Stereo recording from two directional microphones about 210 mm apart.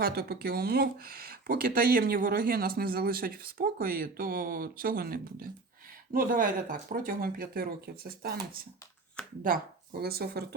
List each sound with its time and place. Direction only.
0.0 s speech: 45° right (ahead or behind)
9.2 s speech: 5° left (ahead or behind)
10.0 s speech: 45° right (ahead or behind)